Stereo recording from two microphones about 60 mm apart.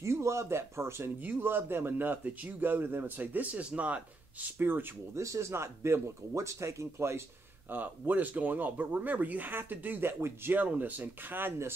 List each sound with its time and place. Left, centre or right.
0.0 s speech: right
4.6 s speech: right
5.1 s speech: right
7.7 s speech: right